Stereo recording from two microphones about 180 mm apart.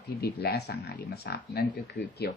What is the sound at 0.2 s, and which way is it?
Speech, 65° left (ahead or behind).